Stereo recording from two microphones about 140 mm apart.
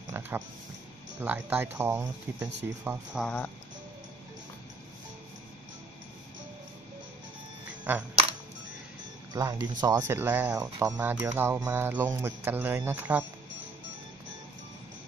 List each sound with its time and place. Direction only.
0.2 s a sound: 15° right (ahead or behind)
1.2 s speech: 10° right (ahead or behind)
3.3 s speech: 15° left (ahead or behind)
7.9 s speech: 15° right (ahead or behind)
9.3 s speech: 25° right (ahead or behind)
10.5 s speech: 25° right (ahead or behind)
11.0 s speech: 15° right (ahead or behind)